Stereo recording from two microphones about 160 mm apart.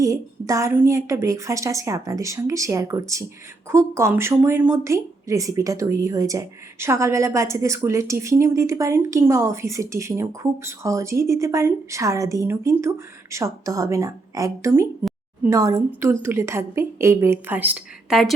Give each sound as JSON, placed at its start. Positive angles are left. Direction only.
{"t": 0.0, "sound": "a woman's voice", "side_deg": -20}